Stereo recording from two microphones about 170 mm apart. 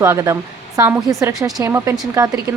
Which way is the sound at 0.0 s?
15° right (ahead or behind).